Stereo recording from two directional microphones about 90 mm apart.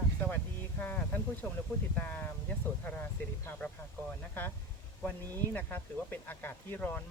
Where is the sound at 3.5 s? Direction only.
10° left (ahead or behind).